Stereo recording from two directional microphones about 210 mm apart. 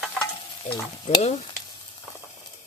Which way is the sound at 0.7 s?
35° left (ahead or behind).